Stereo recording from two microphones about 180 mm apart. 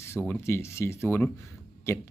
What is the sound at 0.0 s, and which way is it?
Speech, 15° left (ahead or behind).